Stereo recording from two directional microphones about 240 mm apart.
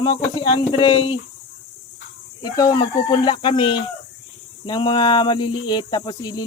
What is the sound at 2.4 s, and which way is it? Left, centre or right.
Speech, centre.